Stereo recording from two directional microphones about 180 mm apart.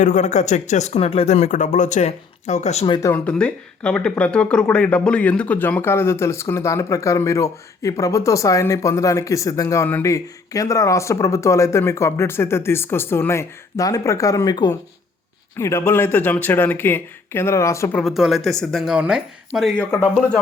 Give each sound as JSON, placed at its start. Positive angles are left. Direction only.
{"t": 0.0, "sound": "speech", "side_deg": 40}
{"t": 2.8, "sound": "speech", "side_deg": 25}
{"t": 3.1, "sound": "speech", "side_deg": 5}
{"t": 17.9, "sound": "speech", "side_deg": 0}
{"t": 19.8, "sound": "speech", "side_deg": 10}